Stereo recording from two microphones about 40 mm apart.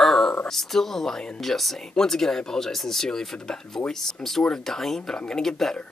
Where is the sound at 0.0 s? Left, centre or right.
Centre.